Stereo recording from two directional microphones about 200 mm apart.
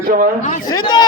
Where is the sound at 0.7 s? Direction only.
20° left (ahead or behind).